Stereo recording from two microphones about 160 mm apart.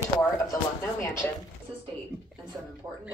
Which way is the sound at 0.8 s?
15° left (ahead or behind).